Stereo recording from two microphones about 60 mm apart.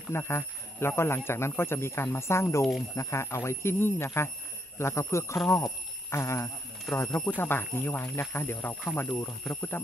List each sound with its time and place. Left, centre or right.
0.1 s speech: left